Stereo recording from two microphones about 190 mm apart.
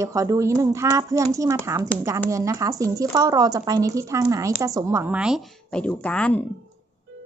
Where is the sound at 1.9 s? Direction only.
5° left (ahead or behind).